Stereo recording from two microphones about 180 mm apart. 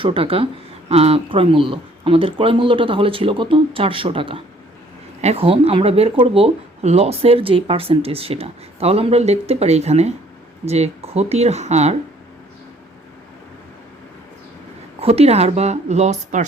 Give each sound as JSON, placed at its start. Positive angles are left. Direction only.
{"t": 0.0, "sound": "speech", "side_deg": -30}
{"t": 15.0, "sound": "speech", "side_deg": -35}